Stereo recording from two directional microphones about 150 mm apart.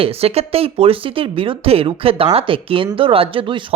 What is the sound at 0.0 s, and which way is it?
Speech, 40° right (ahead or behind).